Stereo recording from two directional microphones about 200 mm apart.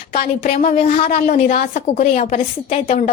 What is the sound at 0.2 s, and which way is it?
A woman's voice, 40° left (ahead or behind).